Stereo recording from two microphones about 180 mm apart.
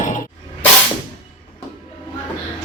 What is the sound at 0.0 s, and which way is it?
Music, 45° left (ahead or behind).